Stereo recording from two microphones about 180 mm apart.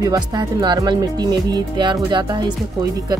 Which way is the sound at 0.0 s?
25° right (ahead or behind).